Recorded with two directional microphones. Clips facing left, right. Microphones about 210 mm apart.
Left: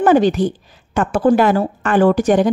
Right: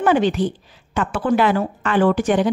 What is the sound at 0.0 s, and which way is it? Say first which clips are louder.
A woman's voice: left 4 dB; 40° left (ahead or behind).